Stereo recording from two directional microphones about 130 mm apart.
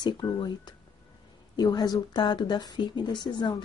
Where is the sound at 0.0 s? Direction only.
35° left (ahead or behind).